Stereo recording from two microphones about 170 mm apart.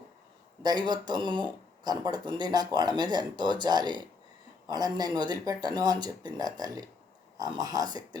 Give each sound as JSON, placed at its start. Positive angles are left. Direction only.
{"t": 0.6, "sound": "speech", "side_deg": -25}